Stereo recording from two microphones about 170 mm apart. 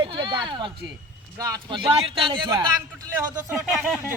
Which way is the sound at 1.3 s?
25° right (ahead or behind).